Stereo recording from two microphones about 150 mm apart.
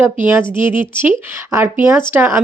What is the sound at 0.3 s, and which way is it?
Speech, 15° right (ahead or behind).